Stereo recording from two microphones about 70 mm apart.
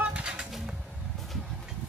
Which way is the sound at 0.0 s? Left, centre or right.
Centre.